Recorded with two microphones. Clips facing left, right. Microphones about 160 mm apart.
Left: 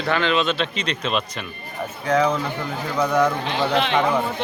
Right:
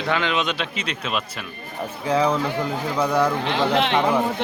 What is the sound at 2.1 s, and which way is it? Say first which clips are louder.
Speech: left 1 dB; 30° right (ahead or behind).